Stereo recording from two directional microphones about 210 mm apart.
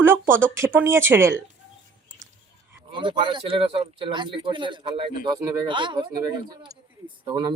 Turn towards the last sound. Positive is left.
turn(degrees=-20)  # may be behind; listen again after turning